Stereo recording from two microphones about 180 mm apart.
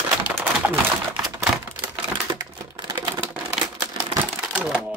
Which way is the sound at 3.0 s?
10° right (ahead or behind).